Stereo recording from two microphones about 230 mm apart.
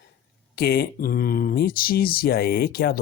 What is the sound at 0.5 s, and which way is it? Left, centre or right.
Speech, left.